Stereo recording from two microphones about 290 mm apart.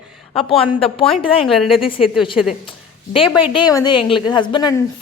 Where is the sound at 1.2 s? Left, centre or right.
Centre.